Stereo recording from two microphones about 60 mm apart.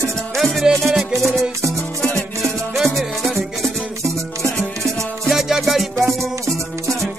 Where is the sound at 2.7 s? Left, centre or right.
Centre.